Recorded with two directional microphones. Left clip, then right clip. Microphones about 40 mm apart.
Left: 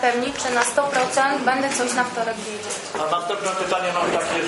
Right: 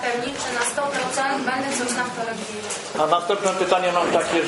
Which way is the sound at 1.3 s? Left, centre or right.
Left.